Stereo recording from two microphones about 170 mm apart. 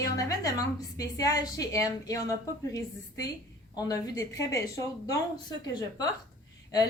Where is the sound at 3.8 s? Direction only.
20° left (ahead or behind).